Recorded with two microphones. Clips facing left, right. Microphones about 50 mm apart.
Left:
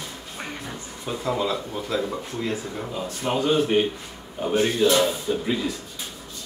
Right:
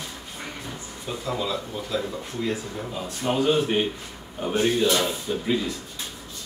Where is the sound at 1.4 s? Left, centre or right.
Left.